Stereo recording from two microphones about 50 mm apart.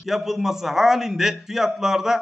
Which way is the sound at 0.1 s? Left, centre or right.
Centre.